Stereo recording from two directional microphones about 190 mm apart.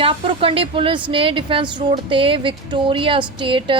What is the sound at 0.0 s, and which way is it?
A woman's voice, 30° right (ahead or behind).